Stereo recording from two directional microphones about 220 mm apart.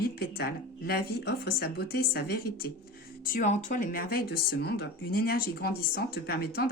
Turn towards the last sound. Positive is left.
turn(degrees=45)  # may be behind; listen again after turning